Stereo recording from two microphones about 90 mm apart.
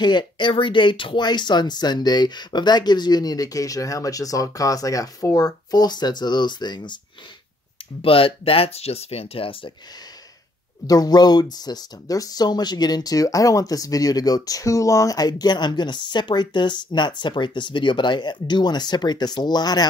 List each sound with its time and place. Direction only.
0.0 s speech: 55° left (ahead or behind)
8.0 s speech: 90° left
10.9 s speech: 45° left (ahead or behind)